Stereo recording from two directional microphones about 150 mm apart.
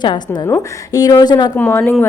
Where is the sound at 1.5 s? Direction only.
10° left (ahead or behind).